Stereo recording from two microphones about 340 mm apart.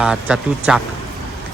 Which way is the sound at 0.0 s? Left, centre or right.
Centre.